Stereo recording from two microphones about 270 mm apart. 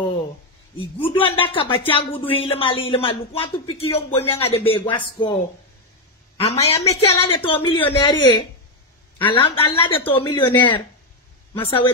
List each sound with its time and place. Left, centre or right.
0.7 s speech: centre
6.4 s speech: left
9.2 s speech: centre